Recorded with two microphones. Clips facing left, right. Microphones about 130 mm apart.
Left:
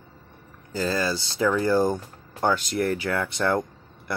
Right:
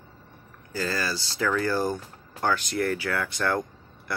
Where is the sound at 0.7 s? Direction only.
20° left (ahead or behind).